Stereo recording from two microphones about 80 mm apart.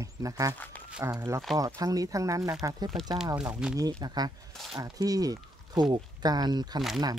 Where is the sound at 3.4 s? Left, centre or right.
Centre.